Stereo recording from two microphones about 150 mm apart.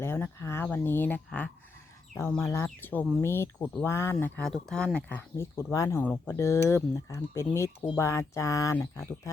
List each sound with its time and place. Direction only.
0.0 s speech: 15° left (ahead or behind)